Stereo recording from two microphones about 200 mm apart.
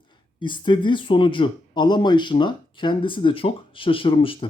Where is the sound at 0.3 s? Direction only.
25° left (ahead or behind).